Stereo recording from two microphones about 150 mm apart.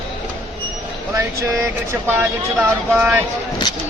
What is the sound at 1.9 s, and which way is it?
Speech, 15° right (ahead or behind).